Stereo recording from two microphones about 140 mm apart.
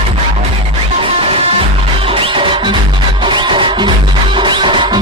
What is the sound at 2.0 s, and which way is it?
Music, 40° right (ahead or behind).